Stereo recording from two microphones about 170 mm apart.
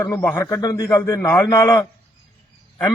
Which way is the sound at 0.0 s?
15° left (ahead or behind).